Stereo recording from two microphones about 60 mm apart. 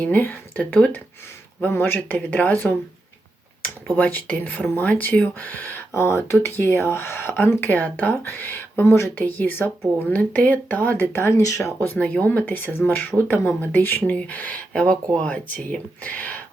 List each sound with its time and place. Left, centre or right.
0.0 s speech: left
1.7 s speech: left
2.0 s speech: left
3.9 s speech: left
5.9 s speech: left
7.7 s speech: left
9.2 s speech: left
11.1 s speech: left
11.4 s speech: left
11.9 s speech: left